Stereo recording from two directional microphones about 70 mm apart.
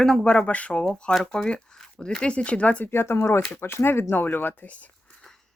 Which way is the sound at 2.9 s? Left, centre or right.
Left.